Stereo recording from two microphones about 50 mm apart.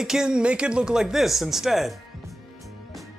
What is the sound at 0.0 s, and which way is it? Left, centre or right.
Speech, centre.